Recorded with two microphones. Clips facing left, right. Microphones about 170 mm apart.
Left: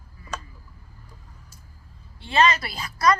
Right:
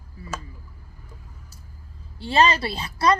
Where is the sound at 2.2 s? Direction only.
35° right (ahead or behind).